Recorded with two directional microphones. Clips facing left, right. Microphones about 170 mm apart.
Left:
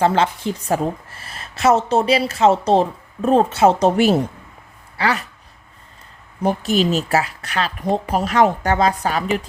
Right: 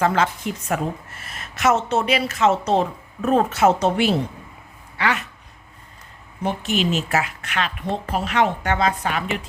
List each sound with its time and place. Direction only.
0.0 s a woman's voice: 30° left (ahead or behind)
6.4 s a woman's voice: 40° left (ahead or behind)